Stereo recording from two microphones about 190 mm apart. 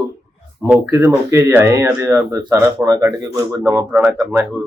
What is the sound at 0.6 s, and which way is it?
Speech, 10° right (ahead or behind).